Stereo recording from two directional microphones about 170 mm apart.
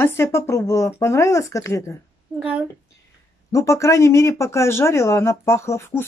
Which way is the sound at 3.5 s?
15° left (ahead or behind).